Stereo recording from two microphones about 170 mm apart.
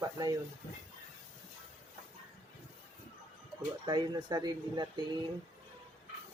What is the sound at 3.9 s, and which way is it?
Speech, 25° right (ahead or behind).